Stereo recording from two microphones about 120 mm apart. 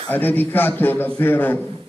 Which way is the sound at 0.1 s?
15° left (ahead or behind).